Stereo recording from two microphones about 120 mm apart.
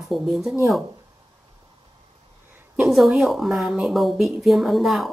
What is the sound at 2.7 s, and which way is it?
A woman's voice, centre (ahead or behind).